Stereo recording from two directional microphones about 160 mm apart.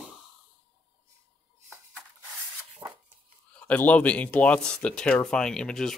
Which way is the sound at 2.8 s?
20° right (ahead or behind).